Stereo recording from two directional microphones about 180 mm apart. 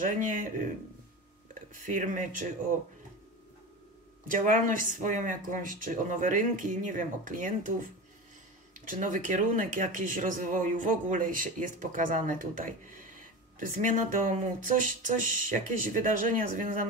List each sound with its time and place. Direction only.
0.0 s speech: 50° right (ahead or behind)
1.7 s speech: 45° right (ahead or behind)
4.3 s speech: 45° right (ahead or behind)
8.8 s speech: 45° right (ahead or behind)